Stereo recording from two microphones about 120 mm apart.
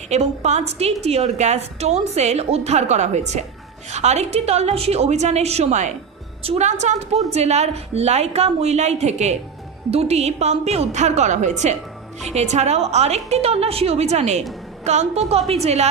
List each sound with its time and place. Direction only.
0.1 s a woman's voice: 70° right (ahead or behind)
6.4 s a woman's voice: 55° right (ahead or behind)
6.7 s a woman's voice: 75° right (ahead or behind)